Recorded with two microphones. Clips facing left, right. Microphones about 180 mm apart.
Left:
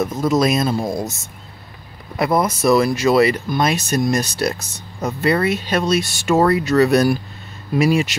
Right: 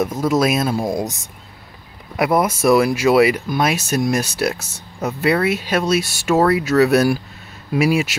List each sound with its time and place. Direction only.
0.0 s speech: 10° right (ahead or behind)